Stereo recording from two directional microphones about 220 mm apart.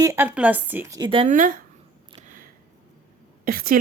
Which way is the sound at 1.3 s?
35° right (ahead or behind).